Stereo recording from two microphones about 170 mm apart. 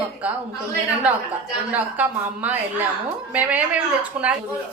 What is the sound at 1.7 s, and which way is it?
A woman's voice, 10° right (ahead or behind).